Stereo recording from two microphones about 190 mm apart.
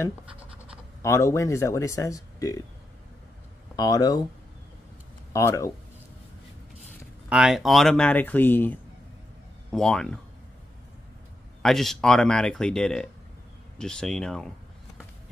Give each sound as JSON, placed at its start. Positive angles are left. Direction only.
{"t": 1.0, "sound": "speech", "side_deg": 15}
{"t": 3.7, "sound": "speech", "side_deg": 20}
{"t": 5.3, "sound": "speech", "side_deg": 15}
{"t": 7.2, "sound": "speech", "side_deg": -5}
{"t": 11.6, "sound": "speech", "side_deg": 0}